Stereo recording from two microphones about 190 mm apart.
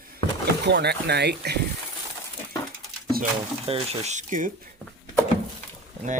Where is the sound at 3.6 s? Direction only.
30° right (ahead or behind).